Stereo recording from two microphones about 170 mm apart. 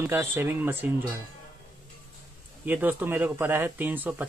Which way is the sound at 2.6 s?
10° right (ahead or behind).